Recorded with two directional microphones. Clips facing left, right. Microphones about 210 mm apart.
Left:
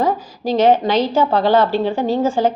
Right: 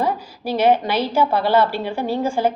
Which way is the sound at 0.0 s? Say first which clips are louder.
Left 4 dB; 10° right (ahead or behind).